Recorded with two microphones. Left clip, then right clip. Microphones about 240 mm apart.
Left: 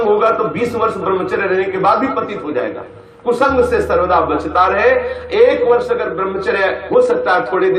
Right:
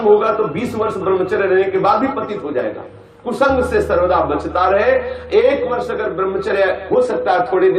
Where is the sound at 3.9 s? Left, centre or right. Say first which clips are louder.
Left 1 dB; left.